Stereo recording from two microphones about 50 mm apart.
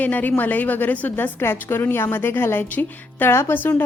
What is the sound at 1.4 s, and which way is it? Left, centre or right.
Speech, left.